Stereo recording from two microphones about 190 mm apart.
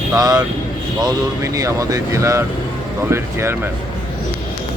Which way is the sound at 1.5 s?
20° right (ahead or behind).